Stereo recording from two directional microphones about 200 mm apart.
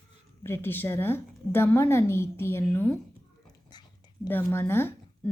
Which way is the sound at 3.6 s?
20° left (ahead or behind).